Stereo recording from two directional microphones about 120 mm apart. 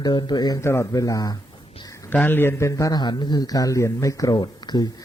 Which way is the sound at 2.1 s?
15° left (ahead or behind).